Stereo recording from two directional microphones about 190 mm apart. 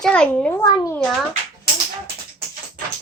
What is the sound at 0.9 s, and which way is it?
Speech, 5° left (ahead or behind).